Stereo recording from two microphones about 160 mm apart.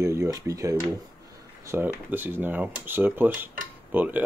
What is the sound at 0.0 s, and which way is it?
Speech, 15° right (ahead or behind).